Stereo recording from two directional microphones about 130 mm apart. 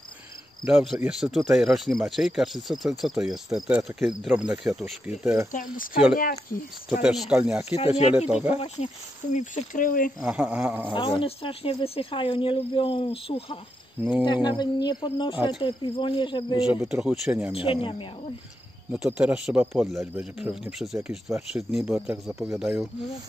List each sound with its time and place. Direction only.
0.7 s a man's voice: centre (ahead or behind)
5.5 s speech: 90° left
7.0 s speech: 5° right (ahead or behind)
7.7 s speech: 50° left (ahead or behind)
8.3 s speech: 5° right (ahead or behind)
8.5 s speech: 65° left (ahead or behind); by 10.1 s 90° left
10.2 s speech: 10° right (ahead or behind)
10.9 s speech: 40° left (ahead or behind)
14.2 s speech: 35° left (ahead or behind)
16.5 s a man's voice: 5° right (ahead or behind)
17.6 s speech: 40° left (ahead or behind)
18.9 s a man's voice: 10° right (ahead or behind)